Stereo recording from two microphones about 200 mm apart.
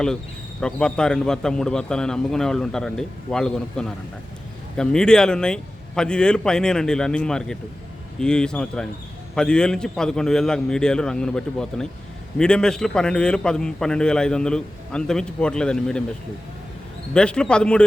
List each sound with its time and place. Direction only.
0.6 s a man's voice: 5° left (ahead or behind)
17.2 s a man's voice: 5° left (ahead or behind)